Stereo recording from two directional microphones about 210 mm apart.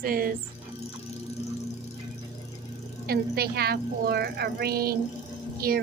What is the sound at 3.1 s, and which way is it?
A woman's voice, 50° right (ahead or behind).